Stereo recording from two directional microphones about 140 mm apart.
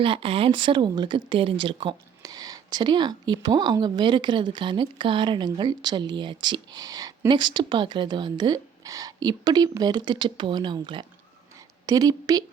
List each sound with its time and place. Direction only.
0.0 s a woman's voice: 40° right (ahead or behind)